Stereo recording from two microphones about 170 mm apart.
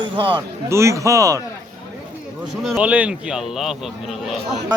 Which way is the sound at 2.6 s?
5° right (ahead or behind).